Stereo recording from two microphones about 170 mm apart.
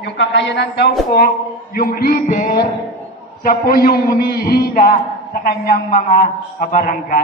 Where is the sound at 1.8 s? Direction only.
60° left (ahead or behind).